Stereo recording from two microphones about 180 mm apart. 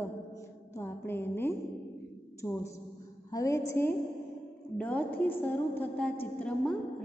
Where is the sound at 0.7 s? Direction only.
10° left (ahead or behind).